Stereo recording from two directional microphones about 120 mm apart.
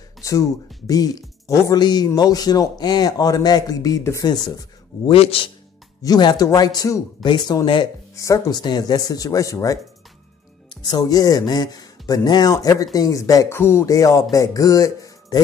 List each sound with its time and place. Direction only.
0.2 s a man's voice: 25° left (ahead or behind)
5.1 s a man's voice: 50° left (ahead or behind)
6.0 s a man's voice: 35° left (ahead or behind)
8.2 s a man's voice: 30° left (ahead or behind)